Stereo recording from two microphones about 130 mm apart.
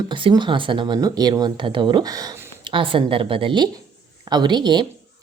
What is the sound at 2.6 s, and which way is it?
A woman's voice, 40° right (ahead or behind).